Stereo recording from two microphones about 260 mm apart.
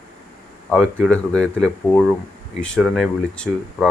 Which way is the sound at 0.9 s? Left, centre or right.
Centre.